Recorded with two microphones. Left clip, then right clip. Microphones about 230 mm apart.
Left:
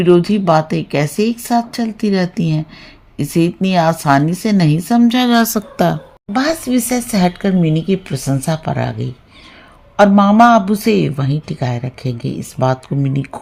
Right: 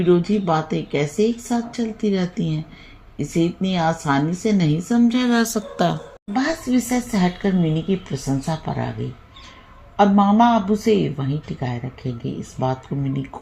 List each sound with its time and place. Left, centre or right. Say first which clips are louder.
0.0 s speech: left 6 dB; left
5.4 s a woman's voice: left 5 dB; left
6.3 s speech: left 5 dB; left
10.0 s speech: left 6 dB; left